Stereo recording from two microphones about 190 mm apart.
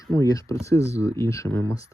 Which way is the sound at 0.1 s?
15° left (ahead or behind).